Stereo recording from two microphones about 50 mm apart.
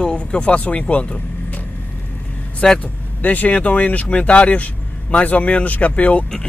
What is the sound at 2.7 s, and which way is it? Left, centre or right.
Speech, left.